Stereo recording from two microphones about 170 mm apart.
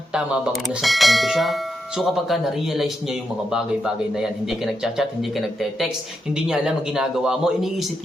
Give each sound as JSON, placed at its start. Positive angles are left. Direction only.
{"t": 0.1, "sound": "a man's voice", "side_deg": 0}